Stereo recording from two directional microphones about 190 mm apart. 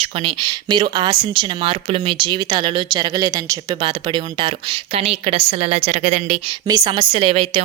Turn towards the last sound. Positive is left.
turn(degrees=-30)  # may be behind; listen again after turning